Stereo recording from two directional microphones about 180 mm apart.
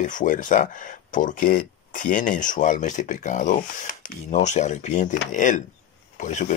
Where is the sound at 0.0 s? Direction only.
45° left (ahead or behind).